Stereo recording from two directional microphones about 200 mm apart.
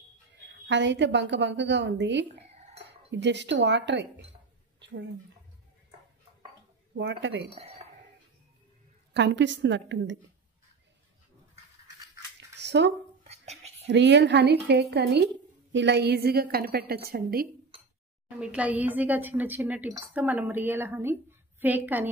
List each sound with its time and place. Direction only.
0.4 s a woman's voice: 65° right (ahead or behind)
2.5 s dishes: 30° right (ahead or behind)
2.8 s speech: 60° right (ahead or behind)
4.7 s a sound: 60° right (ahead or behind)
7.0 s a woman's voice: 60° right (ahead or behind)
9.1 s a woman's voice: 65° right (ahead or behind)
12.5 s a sound: 60° right (ahead or behind)
13.3 s a sound: 30° right (ahead or behind)
13.8 s a woman's voice: 60° right (ahead or behind)
18.4 s a woman's voice: 5° right (ahead or behind)